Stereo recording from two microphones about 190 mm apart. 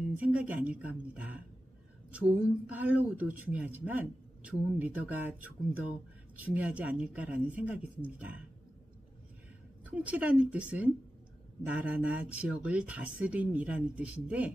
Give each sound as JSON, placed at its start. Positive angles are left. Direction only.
{"t": 0.2, "sound": "speech", "side_deg": -5}
{"t": 9.8, "sound": "speech", "side_deg": -5}
{"t": 11.7, "sound": "speech", "side_deg": -5}